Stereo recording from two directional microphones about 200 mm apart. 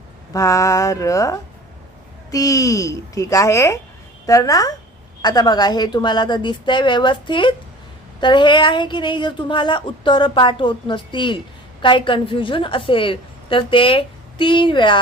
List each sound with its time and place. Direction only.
0.3 s a child's voice: 15° left (ahead or behind)